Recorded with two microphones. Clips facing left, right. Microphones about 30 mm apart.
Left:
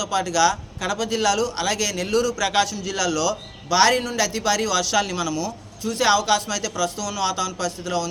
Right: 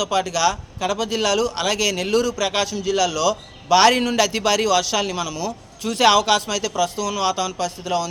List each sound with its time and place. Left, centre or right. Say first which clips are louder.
0.1 s a man's voice: left 4 dB; right
2.4 s speech: even; centre
3.1 s a man's voice: right 2 dB; right
4.9 s speech: left 1 dB; centre
5.8 s a man's voice: right 4 dB; right
6.2 s a man's voice: right 2 dB; right